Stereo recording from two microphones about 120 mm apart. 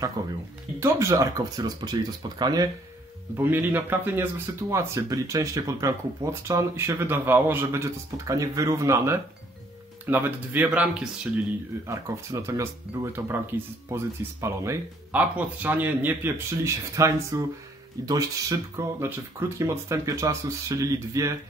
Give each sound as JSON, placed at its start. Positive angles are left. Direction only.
{"t": 0.2, "sound": "speech", "side_deg": -30}
{"t": 3.3, "sound": "a man's voice", "side_deg": -15}
{"t": 11.9, "sound": "speech", "side_deg": -25}
{"t": 15.1, "sound": "a man's voice", "side_deg": -15}